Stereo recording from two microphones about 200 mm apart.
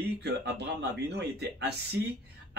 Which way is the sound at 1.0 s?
55° right (ahead or behind).